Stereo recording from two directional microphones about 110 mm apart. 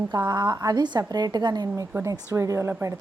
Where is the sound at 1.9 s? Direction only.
25° right (ahead or behind).